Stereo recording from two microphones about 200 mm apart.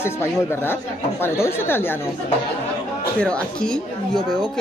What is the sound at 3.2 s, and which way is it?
Speech, 5° left (ahead or behind).